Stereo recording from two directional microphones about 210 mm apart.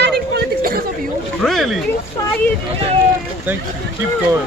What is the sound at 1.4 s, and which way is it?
Speech, centre (ahead or behind).